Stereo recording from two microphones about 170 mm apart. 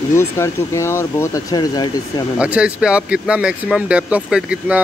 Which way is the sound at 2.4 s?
5° right (ahead or behind).